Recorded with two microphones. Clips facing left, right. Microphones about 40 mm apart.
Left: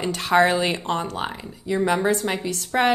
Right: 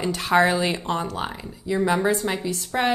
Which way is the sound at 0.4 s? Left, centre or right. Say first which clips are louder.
Left 2 dB; left.